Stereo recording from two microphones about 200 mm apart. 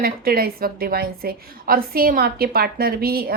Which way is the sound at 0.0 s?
50° right (ahead or behind).